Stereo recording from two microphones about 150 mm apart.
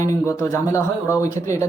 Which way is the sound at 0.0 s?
20° left (ahead or behind).